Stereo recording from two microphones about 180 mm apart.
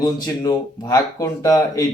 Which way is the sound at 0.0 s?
20° left (ahead or behind).